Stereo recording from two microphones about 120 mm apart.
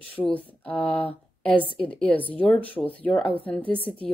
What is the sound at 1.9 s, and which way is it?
Speech, 10° left (ahead or behind).